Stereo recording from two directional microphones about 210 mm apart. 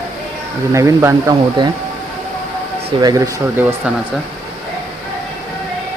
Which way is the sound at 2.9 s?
20° right (ahead or behind).